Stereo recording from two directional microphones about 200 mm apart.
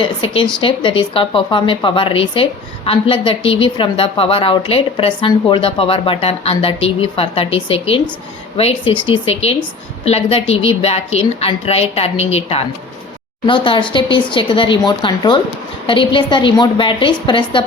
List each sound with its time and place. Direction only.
0.0 s a woman's voice: 25° left (ahead or behind)